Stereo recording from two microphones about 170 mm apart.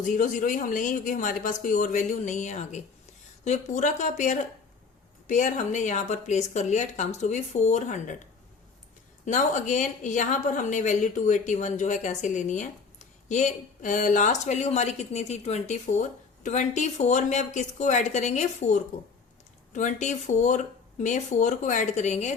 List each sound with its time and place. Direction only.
0.0 s a woman's voice: 50° left (ahead or behind)
9.2 s a woman's voice: 45° left (ahead or behind)